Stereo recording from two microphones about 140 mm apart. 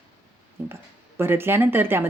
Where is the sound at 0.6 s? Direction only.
15° right (ahead or behind).